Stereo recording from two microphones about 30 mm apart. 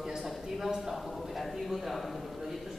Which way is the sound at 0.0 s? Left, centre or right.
Centre.